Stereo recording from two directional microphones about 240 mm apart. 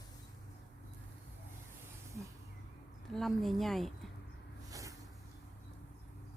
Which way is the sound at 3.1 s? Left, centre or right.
Centre.